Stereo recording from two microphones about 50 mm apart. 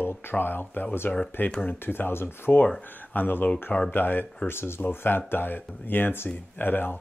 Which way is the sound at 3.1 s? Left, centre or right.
Left.